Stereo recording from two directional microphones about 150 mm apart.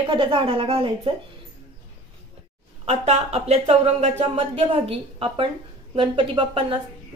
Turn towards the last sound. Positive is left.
turn(degrees=-35)  # may be behind; listen again after turning